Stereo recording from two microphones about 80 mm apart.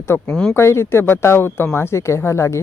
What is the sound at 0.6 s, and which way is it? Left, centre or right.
Speech, left.